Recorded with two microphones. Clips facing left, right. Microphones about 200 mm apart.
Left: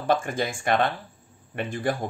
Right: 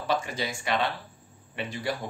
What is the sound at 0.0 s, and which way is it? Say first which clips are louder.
Speech: left 5 dB; 50° left (ahead or behind).